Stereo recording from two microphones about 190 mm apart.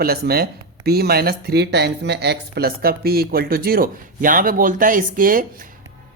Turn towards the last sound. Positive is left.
turn(degrees=-45)  # may be behind; listen again after turning